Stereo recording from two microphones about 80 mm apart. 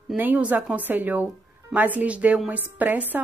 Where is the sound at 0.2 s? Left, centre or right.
Right.